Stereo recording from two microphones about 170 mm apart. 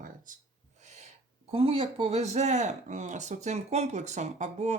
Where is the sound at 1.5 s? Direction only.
35° right (ahead or behind).